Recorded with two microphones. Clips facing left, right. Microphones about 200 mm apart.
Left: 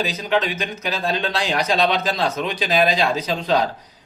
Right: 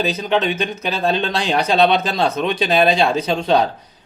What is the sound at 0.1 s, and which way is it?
Speech, 25° right (ahead or behind).